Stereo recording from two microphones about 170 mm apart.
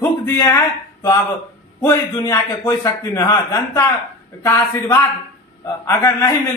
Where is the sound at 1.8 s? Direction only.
15° left (ahead or behind).